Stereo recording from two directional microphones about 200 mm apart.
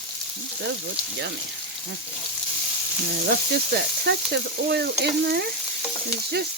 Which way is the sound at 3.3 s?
55° right (ahead or behind).